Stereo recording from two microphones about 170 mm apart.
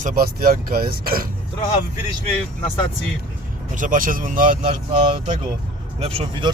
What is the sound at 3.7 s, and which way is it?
Speech, 50° right (ahead or behind).